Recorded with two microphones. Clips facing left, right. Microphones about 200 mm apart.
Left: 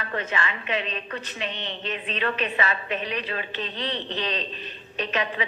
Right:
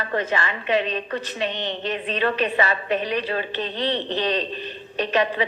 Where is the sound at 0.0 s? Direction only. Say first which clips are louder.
Right 5 dB; 35° right (ahead or behind).